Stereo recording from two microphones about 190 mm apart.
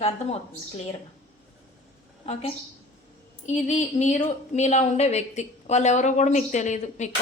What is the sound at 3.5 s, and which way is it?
A woman's voice, 40° left (ahead or behind).